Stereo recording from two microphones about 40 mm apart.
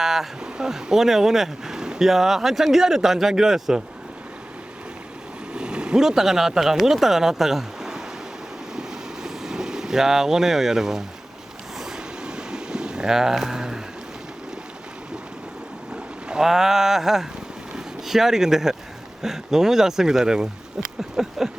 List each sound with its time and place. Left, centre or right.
0.0 s speech: centre
5.5 s boat: right
6.0 s speech: centre
9.2 s speech: centre
11.9 s a sound: centre
16.3 s speech: centre
21.0 s a sound: centre